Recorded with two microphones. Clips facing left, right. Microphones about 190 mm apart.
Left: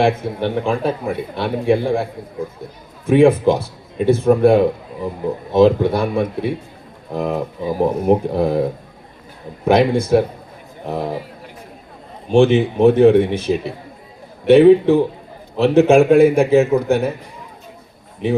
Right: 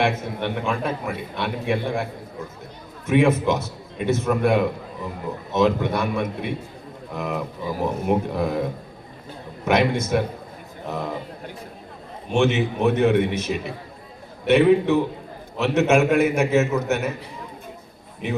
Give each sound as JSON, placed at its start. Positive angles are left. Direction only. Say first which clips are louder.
{"t": 0.0, "sound": "a man's voice", "louder": "left 6 dB", "side_deg": 30}
{"t": 3.1, "sound": "a man's voice", "louder": "left 7 dB", "side_deg": 30}
{"t": 9.6, "sound": "a man's voice", "louder": "left 6 dB", "side_deg": 30}
{"t": 12.3, "sound": "a man's voice", "louder": "left 7 dB", "side_deg": 30}